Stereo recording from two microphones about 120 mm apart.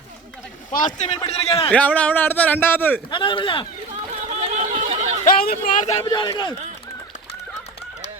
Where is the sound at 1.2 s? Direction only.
50° left (ahead or behind).